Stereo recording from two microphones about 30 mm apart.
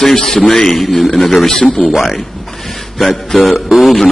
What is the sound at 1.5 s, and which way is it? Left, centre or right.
Speech, left.